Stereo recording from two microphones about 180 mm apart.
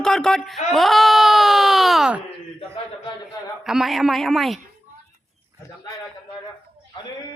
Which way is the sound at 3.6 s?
Centre (ahead or behind).